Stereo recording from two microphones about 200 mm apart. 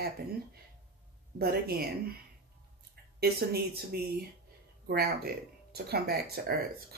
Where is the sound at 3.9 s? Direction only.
50° right (ahead or behind).